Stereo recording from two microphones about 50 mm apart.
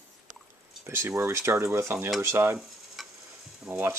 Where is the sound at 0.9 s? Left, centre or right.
Right.